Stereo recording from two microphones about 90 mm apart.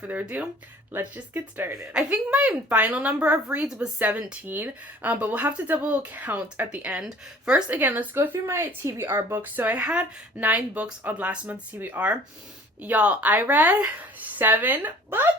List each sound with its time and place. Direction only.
0.1 s a woman's voice: 15° right (ahead or behind)
1.9 s a woman's voice: 15° right (ahead or behind)
7.7 s a woman's voice: 20° right (ahead or behind)